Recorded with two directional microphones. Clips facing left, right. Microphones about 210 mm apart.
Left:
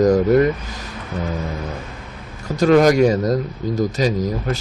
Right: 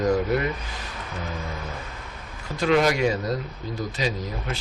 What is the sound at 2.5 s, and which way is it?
Speech, 45° left (ahead or behind).